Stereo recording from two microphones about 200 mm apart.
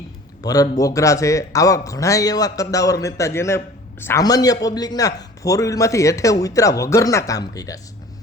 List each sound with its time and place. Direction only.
0.4 s a man's voice: 20° left (ahead or behind)